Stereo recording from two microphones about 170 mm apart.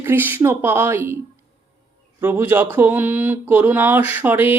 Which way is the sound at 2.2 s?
10° right (ahead or behind).